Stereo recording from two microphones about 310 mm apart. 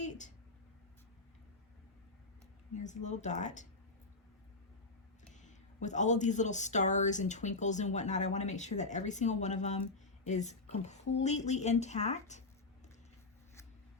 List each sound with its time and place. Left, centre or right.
0.0 s a sound: left
2.7 s speech: left
5.3 s speech: left